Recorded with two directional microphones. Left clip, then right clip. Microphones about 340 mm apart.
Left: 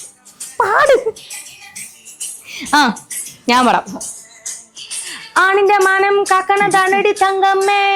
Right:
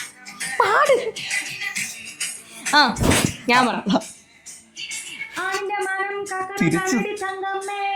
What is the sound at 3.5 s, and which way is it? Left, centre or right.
Speech, left.